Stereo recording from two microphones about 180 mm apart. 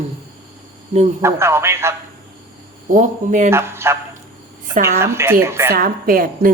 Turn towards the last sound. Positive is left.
turn(degrees=-55)  # may be behind; listen again after turning